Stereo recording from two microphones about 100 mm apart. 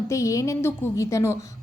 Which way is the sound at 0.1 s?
30° left (ahead or behind).